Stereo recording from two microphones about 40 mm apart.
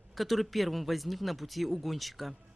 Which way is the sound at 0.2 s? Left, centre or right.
Centre.